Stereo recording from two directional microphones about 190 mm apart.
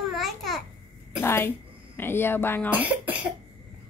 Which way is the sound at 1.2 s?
10° left (ahead or behind).